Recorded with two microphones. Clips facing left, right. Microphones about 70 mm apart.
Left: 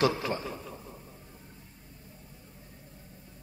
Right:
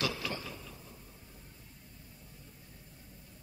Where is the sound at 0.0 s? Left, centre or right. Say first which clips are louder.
Left 9 dB; left.